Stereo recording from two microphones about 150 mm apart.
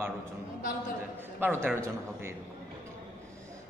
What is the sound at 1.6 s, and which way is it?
Speech, 15° right (ahead or behind).